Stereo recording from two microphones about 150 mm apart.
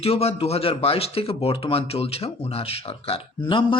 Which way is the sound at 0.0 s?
40° left (ahead or behind).